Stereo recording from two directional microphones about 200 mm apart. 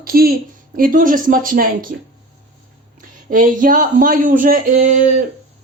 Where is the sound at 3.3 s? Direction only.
40° right (ahead or behind).